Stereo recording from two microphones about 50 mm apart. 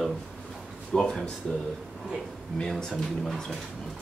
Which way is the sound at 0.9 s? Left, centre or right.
Centre.